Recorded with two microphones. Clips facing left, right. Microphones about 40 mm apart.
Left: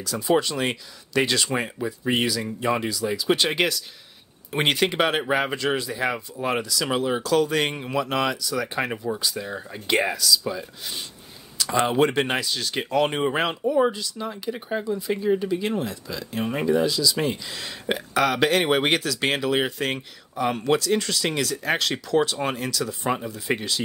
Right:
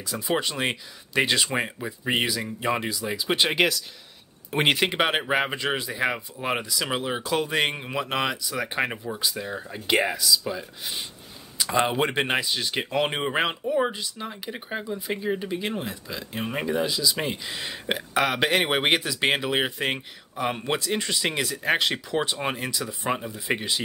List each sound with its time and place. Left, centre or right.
0.0 s speech: right; by 4.8 s centre
4.8 s speech: centre
8.9 s speech: centre
10.1 s speech: centre
11.5 s speech: centre